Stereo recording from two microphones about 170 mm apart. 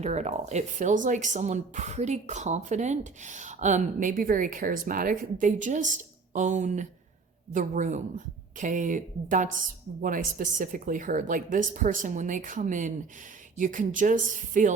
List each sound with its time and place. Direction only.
0.0 s speech: 40° right (ahead or behind)